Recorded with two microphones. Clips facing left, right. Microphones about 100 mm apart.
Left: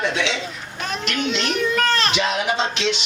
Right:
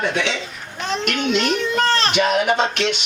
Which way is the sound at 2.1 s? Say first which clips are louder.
Right 4 dB; 50° right (ahead or behind).